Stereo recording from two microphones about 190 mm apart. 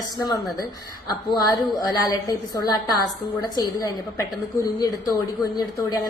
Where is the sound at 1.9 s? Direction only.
20° left (ahead or behind).